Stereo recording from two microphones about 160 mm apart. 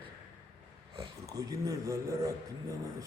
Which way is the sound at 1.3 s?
20° right (ahead or behind).